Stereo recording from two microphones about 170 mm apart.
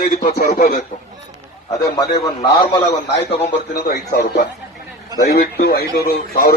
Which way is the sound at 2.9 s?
35° left (ahead or behind).